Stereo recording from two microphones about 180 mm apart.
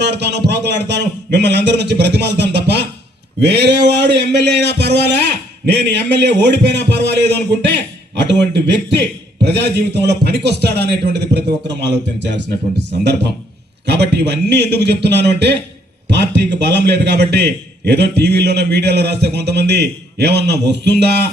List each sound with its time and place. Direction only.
0.0 s a man's voice: 70° right (ahead or behind)